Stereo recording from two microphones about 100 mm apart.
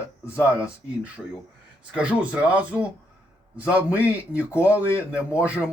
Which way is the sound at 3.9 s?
20° left (ahead or behind).